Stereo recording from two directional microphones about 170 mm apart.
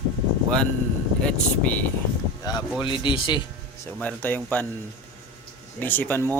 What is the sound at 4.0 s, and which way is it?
Speech, 10° left (ahead or behind).